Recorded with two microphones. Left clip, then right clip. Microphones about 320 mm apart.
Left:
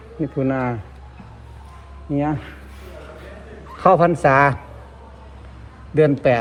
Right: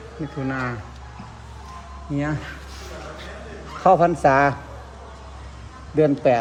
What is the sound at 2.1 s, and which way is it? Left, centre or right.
Speech, centre.